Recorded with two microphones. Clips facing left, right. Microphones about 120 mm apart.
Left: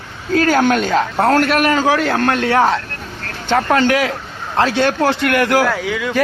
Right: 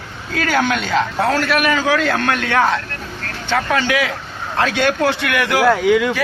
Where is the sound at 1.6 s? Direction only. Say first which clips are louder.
Left 2 dB; 35° left (ahead or behind).